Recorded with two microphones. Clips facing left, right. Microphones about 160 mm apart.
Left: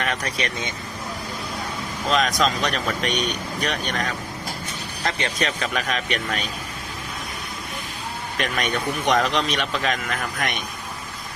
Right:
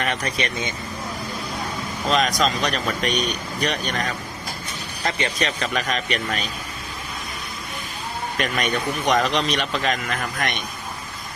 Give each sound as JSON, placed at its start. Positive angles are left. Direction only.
{"t": 0.0, "sound": "speech", "side_deg": -5}
{"t": 2.0, "sound": "speech", "side_deg": 0}
{"t": 5.0, "sound": "speech", "side_deg": 0}
{"t": 8.4, "sound": "speech", "side_deg": 0}